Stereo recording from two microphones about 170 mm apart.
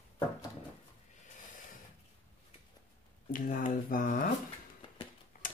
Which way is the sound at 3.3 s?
50° left (ahead or behind).